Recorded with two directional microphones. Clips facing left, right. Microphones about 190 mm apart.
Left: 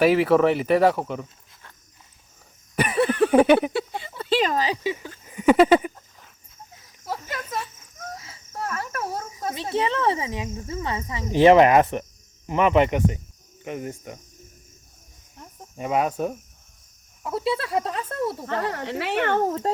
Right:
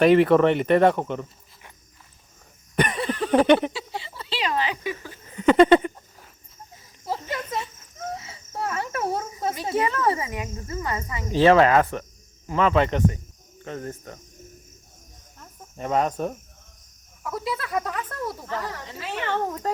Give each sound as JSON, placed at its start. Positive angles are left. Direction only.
{"t": 0.0, "sound": "speech", "side_deg": 5}
{"t": 2.7, "sound": "a sound", "side_deg": 5}
{"t": 3.3, "sound": "speech", "side_deg": 5}
{"t": 3.7, "sound": "a sound", "side_deg": 55}
{"t": 4.9, "sound": "a sound", "side_deg": 10}
{"t": 8.3, "sound": "cricket", "side_deg": -25}
{"t": 9.7, "sound": "speech", "side_deg": 25}
{"t": 15.4, "sound": "cricket", "side_deg": 10}
{"t": 17.2, "sound": "speech", "side_deg": 30}
{"t": 18.4, "sound": "speech", "side_deg": 65}
{"t": 19.5, "sound": "speech", "side_deg": 25}